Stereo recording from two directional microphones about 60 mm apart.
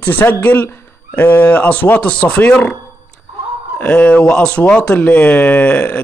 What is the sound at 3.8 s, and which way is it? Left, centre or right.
Speech, left.